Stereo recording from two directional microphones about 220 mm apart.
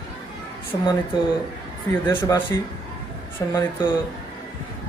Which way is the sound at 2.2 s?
15° left (ahead or behind).